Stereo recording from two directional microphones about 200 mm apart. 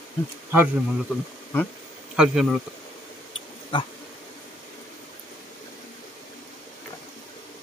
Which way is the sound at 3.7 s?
25° left (ahead or behind).